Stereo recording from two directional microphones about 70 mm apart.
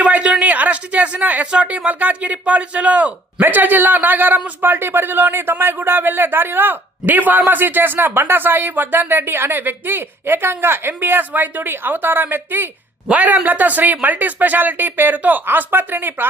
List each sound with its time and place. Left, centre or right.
0.0 s speech: centre